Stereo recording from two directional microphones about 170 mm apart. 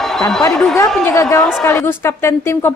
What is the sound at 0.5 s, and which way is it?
Speech, 5° left (ahead or behind).